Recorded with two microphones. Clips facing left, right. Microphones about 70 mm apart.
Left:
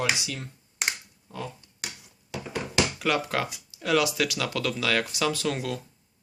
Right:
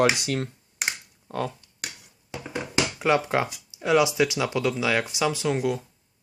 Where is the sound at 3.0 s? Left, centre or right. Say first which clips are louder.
Right 4 dB; right.